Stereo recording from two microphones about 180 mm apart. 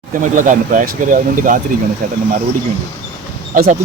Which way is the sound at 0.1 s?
45° right (ahead or behind).